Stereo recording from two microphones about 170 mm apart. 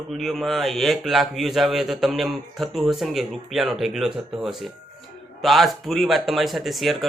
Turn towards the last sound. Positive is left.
turn(degrees=0)  # may be behind; listen again after turning